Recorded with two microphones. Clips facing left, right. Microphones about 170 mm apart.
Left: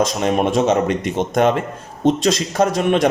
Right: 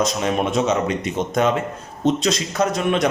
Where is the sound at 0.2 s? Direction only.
50° left (ahead or behind).